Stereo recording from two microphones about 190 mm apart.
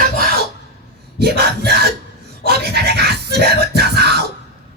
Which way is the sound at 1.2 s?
60° right (ahead or behind).